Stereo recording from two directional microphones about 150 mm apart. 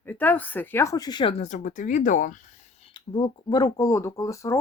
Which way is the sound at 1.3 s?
50° left (ahead or behind).